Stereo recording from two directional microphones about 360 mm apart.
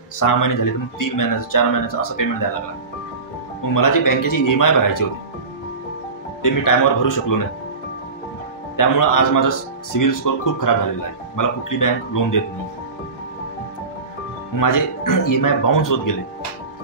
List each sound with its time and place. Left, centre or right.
0.2 s speech: left
3.7 s speech: left
6.4 s speech: left
8.7 s speech: left
14.6 s speech: left